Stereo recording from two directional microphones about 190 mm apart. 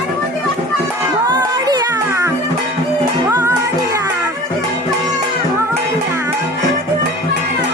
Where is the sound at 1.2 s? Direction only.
20° right (ahead or behind).